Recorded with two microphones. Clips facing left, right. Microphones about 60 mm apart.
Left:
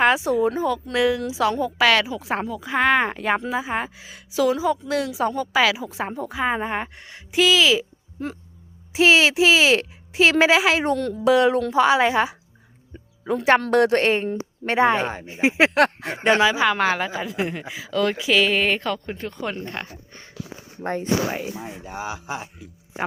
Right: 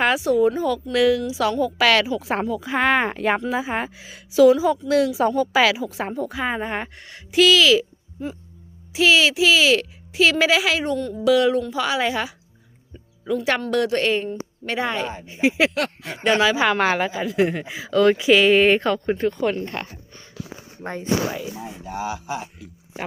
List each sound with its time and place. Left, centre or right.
0.0 s a woman's voice: centre
8.9 s a woman's voice: left
12.9 s music: left
13.7 s a woman's voice: left
15.7 s speech: left
16.1 s a woman's voice: left
16.6 s a woman's voice: centre
19.5 s speech: centre
20.8 s speech: left
21.3 s speech: left
21.8 s speech: centre